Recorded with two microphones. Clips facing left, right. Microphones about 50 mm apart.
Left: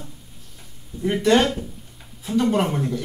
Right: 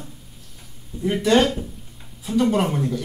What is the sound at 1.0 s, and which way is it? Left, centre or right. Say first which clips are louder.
Speech: even; centre.